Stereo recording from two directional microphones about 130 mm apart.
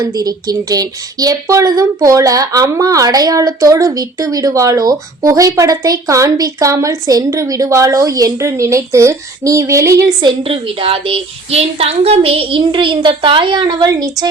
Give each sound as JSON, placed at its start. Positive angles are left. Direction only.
{"t": 0.1, "sound": "speech", "side_deg": -30}
{"t": 10.2, "sound": "a woman's voice", "side_deg": -45}